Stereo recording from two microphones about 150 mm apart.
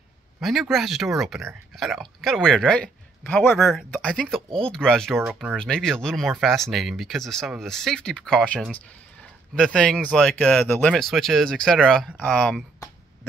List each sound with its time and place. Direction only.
0.4 s speech: centre (ahead or behind)